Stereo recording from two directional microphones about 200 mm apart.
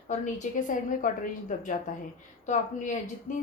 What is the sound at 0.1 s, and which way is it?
A woman's voice, 40° left (ahead or behind).